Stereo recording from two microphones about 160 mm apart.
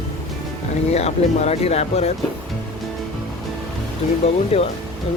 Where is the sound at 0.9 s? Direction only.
40° left (ahead or behind).